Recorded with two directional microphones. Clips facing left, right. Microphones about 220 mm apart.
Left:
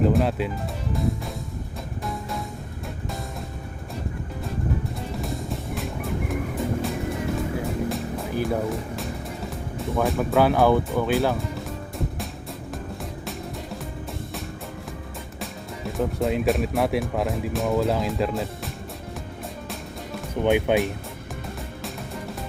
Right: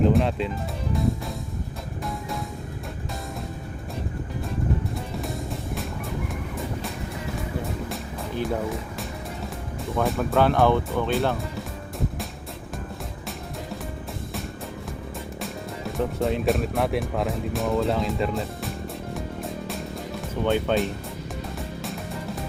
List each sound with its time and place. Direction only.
0.0 s music: 5° left (ahead or behind)
5.1 s music: centre (ahead or behind)
7.9 s music: centre (ahead or behind)
9.9 s speech: centre (ahead or behind)
15.4 s speech: centre (ahead or behind)
20.4 s speech: 15° left (ahead or behind)